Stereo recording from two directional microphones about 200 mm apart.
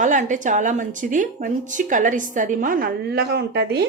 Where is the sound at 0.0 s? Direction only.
40° right (ahead or behind).